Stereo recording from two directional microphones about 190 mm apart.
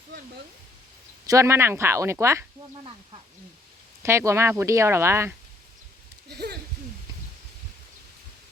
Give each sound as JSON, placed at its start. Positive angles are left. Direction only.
{"t": 1.3, "sound": "speech", "side_deg": -15}
{"t": 4.0, "sound": "speech", "side_deg": -15}
{"t": 6.2, "sound": "a sound", "side_deg": -60}